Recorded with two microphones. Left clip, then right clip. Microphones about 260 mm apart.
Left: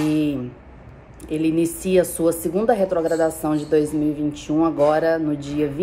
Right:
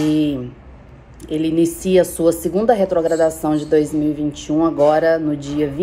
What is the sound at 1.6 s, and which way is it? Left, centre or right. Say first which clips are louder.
Speech: right 5 dB; left.